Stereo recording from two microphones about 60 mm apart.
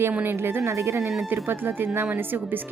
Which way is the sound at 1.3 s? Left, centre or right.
Right.